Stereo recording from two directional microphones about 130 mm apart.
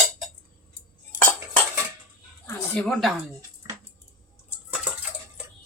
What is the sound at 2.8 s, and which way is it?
Speech, centre (ahead or behind).